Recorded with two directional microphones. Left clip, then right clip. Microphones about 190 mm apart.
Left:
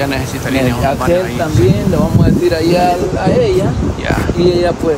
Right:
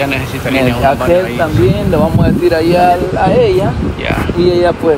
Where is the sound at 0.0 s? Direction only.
Centre (ahead or behind).